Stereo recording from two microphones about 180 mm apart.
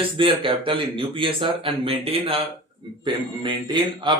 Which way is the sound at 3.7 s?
25° right (ahead or behind).